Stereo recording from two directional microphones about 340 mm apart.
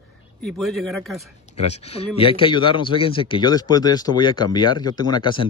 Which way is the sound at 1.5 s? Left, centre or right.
Centre.